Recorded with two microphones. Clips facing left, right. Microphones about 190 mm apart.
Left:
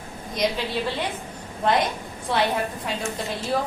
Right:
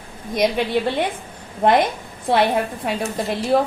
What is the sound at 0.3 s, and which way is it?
Speech, 60° right (ahead or behind).